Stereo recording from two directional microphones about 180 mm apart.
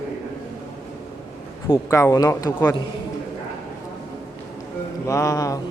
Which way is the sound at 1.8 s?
15° left (ahead or behind).